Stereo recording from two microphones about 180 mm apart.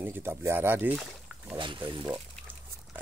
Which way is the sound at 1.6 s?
25° right (ahead or behind).